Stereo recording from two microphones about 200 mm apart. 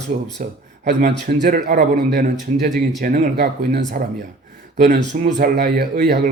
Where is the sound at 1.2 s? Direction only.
40° right (ahead or behind).